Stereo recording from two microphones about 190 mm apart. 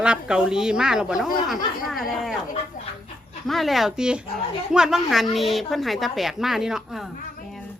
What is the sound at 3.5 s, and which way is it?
A woman's voice, centre (ahead or behind).